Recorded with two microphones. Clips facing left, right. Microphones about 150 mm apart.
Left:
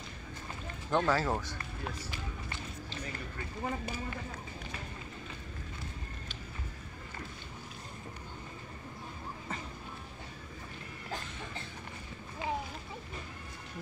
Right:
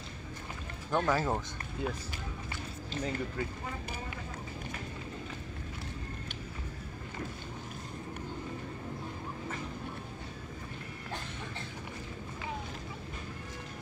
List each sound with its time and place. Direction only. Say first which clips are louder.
0.9 s speech: even; 15° right (ahead or behind)